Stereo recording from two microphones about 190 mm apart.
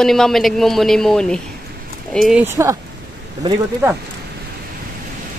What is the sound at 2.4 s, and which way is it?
Speech, 15° right (ahead or behind).